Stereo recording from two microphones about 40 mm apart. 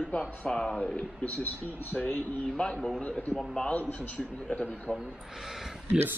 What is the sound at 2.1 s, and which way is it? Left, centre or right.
Speech, left.